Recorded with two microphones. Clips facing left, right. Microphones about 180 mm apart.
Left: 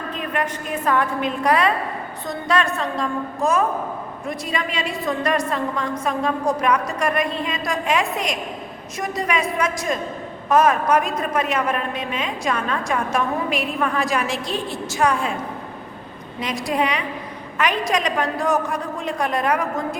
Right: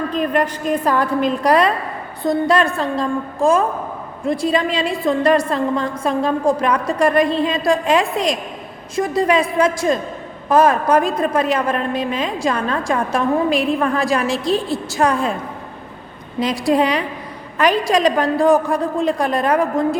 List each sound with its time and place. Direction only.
0.1 s a woman's voice: 35° right (ahead or behind)
16.4 s a woman's voice: 35° right (ahead or behind)